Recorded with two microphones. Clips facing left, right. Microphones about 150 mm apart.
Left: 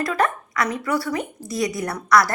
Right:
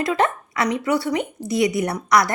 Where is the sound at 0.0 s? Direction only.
25° right (ahead or behind).